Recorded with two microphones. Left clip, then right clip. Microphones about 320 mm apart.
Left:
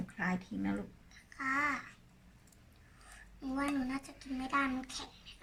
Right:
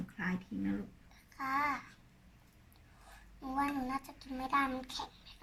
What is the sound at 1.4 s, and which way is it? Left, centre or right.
Babbling, centre.